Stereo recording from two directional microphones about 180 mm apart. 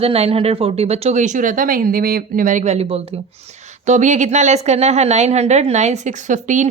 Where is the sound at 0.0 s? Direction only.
35° right (ahead or behind).